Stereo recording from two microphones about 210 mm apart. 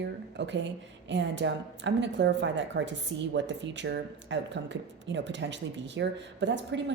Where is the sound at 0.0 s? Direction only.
55° right (ahead or behind).